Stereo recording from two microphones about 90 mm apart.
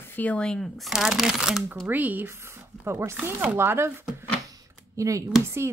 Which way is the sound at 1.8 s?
20° right (ahead or behind).